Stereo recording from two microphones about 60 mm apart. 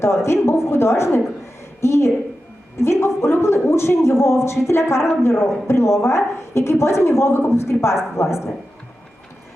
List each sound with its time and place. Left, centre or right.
0.0 s a woman's voice: left